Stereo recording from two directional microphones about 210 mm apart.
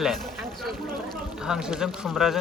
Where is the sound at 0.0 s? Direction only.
Centre (ahead or behind).